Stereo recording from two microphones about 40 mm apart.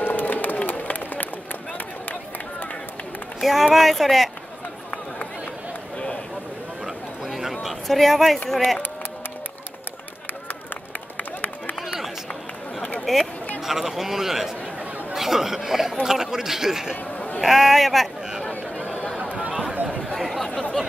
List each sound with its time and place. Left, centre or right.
0.0 s crowd: left
0.6 s run: left
3.3 s speech: centre
7.9 s speech: centre
11.1 s run: left
13.1 s speech: centre
13.6 s a man's voice: centre
19.7 s a sound: right
20.2 s a sound: centre